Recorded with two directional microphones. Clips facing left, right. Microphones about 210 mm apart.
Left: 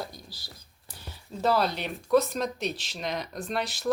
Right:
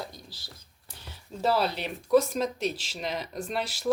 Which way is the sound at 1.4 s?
5° right (ahead or behind).